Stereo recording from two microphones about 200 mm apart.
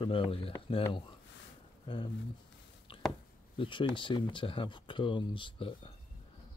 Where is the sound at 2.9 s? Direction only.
25° left (ahead or behind).